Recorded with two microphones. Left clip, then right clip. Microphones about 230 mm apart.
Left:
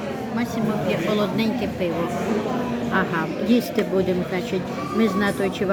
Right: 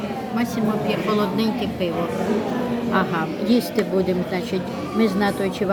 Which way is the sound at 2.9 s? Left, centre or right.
Centre.